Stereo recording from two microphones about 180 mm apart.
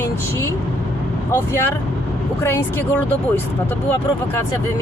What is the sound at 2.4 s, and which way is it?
Speech, 15° left (ahead or behind).